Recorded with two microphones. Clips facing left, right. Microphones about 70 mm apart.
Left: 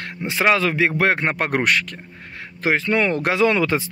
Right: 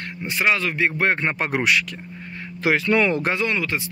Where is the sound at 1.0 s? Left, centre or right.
Left.